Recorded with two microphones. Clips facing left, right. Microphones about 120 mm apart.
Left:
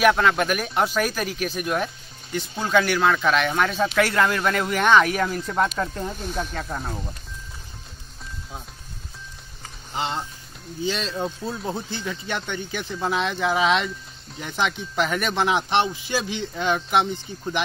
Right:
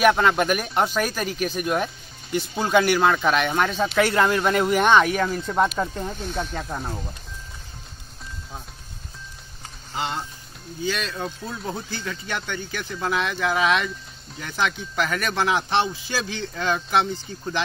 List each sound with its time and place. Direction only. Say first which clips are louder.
0.0 s speech: even; 5° right (ahead or behind)
9.9 s speech: left 1 dB; 20° left (ahead or behind)
11.1 s speech: left 3 dB; 10° left (ahead or behind)